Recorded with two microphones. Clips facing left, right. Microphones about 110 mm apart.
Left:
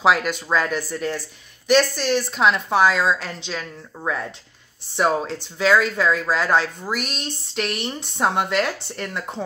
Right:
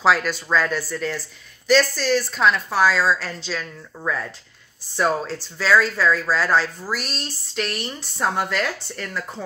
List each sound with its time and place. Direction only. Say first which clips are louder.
0.0 s a woman's voice: even; 15° left (ahead or behind)